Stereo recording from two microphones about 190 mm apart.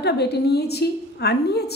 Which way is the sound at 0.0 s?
60° left (ahead or behind).